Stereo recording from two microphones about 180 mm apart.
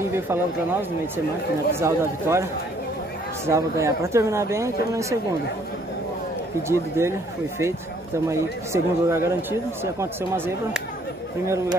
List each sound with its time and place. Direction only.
0.1 s speech: 10° right (ahead or behind)
3.4 s speech: 15° right (ahead or behind)
6.7 s speech: 15° right (ahead or behind)